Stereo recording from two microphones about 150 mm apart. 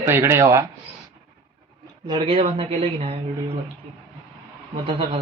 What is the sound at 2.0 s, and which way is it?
Speech, 30° right (ahead or behind).